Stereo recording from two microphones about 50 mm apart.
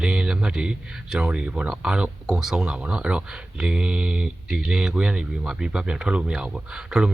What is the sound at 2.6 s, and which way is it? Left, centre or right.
A man's voice, right.